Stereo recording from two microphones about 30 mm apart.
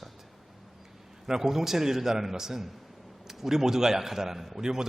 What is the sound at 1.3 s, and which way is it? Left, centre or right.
A man's voice, centre.